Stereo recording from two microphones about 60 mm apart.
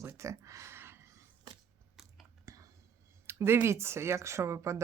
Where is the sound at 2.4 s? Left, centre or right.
Right.